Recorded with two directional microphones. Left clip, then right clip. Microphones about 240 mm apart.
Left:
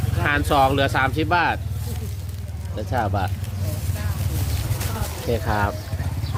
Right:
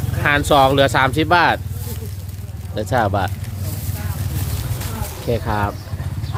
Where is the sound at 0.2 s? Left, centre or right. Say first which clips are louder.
Right 5 dB; right.